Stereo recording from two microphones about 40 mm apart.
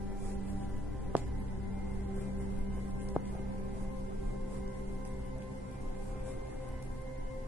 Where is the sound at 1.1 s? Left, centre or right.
Right.